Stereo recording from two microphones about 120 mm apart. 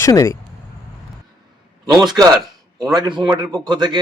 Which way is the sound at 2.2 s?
30° right (ahead or behind).